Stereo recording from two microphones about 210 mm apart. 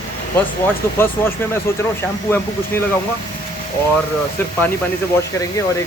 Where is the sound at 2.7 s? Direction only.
10° left (ahead or behind).